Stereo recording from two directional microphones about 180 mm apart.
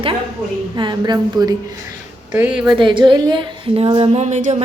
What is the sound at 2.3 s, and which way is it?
Speech, 5° right (ahead or behind).